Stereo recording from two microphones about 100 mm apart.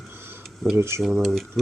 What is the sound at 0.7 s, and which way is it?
Speech, 25° right (ahead or behind).